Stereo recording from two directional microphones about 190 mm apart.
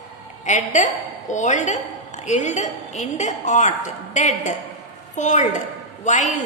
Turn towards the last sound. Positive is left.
turn(degrees=40)  # may be behind; listen again after turning